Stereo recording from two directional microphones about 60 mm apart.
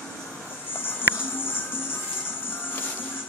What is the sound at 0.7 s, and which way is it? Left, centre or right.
Music, left.